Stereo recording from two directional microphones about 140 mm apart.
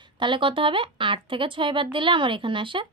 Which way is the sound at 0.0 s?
35° right (ahead or behind).